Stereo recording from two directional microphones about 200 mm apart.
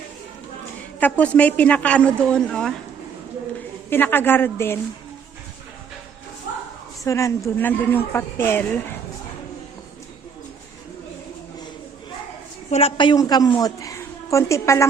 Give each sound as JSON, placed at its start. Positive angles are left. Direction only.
{"t": 0.9, "sound": "speech", "side_deg": 10}
{"t": 3.8, "sound": "speech", "side_deg": 10}
{"t": 7.0, "sound": "speech", "side_deg": 15}
{"t": 12.7, "sound": "a woman's voice", "side_deg": 25}